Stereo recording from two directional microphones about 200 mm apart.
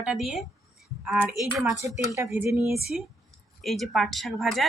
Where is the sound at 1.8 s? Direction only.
10° right (ahead or behind).